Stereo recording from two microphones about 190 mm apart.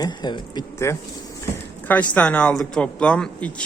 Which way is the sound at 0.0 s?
20° left (ahead or behind).